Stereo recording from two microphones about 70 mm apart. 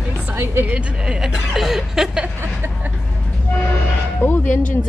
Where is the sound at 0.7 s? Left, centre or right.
Centre.